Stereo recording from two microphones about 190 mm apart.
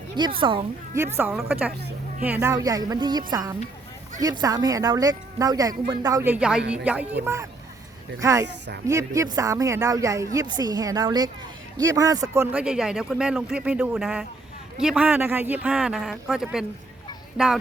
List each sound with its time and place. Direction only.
0.2 s speech: 25° right (ahead or behind)
0.9 s speech: 15° right (ahead or behind)
8.2 s speech: 15° right (ahead or behind)